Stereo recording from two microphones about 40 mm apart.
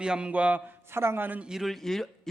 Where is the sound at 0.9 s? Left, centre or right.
Right.